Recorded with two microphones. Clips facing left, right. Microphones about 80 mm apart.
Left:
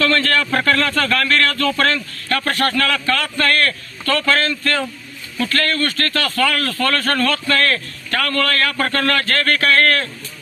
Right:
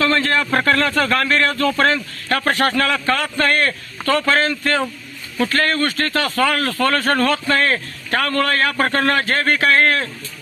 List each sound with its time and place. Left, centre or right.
0.0 s speech: centre